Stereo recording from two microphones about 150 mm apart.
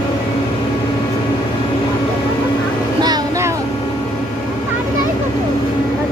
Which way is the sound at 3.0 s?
25° right (ahead or behind).